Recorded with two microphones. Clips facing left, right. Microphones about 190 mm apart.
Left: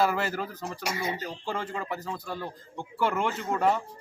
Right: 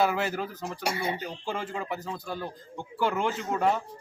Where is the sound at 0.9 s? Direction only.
30° right (ahead or behind).